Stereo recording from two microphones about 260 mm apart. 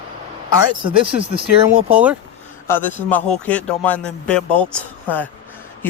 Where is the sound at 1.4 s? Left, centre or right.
Right.